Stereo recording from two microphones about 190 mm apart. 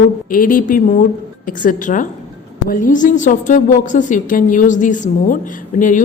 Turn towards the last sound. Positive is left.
turn(degrees=45)  # may be behind; listen again after turning